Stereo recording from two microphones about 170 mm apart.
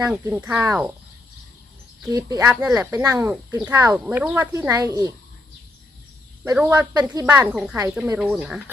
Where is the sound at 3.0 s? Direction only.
20° right (ahead or behind).